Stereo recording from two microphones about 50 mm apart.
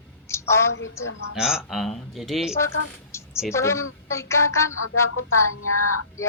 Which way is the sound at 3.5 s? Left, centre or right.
Left.